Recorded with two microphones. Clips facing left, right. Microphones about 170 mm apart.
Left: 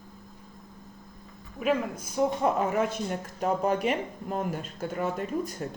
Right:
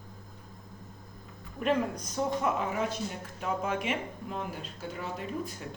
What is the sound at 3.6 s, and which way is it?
Speech, 35° left (ahead or behind).